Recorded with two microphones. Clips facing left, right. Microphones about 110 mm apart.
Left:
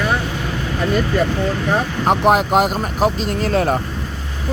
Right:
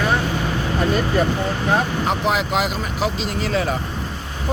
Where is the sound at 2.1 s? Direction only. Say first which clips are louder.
Left 11 dB; 50° left (ahead or behind).